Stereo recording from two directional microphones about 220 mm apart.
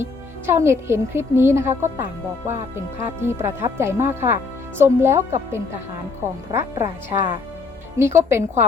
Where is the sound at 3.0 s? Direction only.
10° right (ahead or behind).